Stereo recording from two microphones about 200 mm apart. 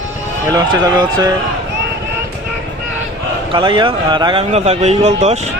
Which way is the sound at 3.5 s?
25° right (ahead or behind).